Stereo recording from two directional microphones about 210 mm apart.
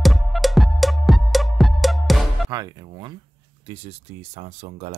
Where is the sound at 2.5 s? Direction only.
20° right (ahead or behind).